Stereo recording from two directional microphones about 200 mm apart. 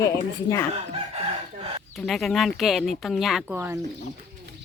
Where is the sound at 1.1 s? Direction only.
30° right (ahead or behind).